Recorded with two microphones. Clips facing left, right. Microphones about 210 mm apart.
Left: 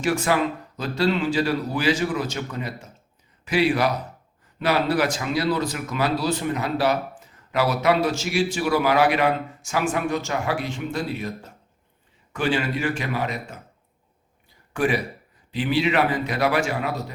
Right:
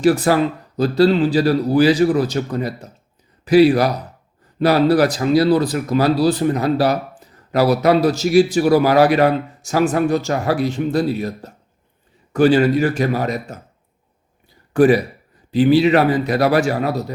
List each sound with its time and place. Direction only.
0.0 s speech: 35° right (ahead or behind)
14.7 s speech: 35° right (ahead or behind)